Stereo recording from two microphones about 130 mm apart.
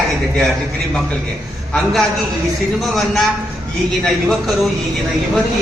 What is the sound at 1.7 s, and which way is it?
A man's voice, 5° left (ahead or behind).